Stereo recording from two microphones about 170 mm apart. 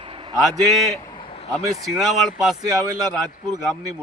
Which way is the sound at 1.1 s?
30° left (ahead or behind).